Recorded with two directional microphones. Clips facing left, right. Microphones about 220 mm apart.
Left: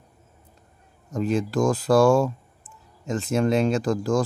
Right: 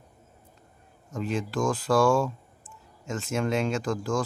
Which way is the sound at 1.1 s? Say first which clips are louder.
Left 6 dB; 40° left (ahead or behind).